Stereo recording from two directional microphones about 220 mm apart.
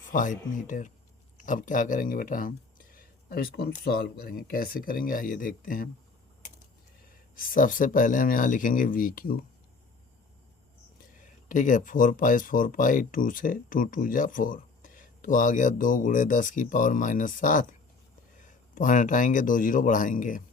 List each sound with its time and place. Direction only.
0.1 s speech: 35° left (ahead or behind)
7.3 s speech: 40° left (ahead or behind)
11.4 s speech: 35° left (ahead or behind)